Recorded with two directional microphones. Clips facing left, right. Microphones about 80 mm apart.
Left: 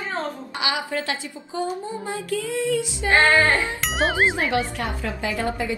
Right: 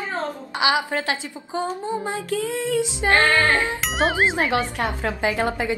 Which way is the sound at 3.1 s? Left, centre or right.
Centre.